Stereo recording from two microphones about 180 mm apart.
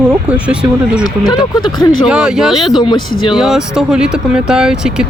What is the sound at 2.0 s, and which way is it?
Speech, 5° right (ahead or behind).